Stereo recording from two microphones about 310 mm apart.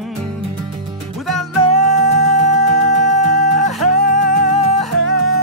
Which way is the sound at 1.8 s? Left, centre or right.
Right.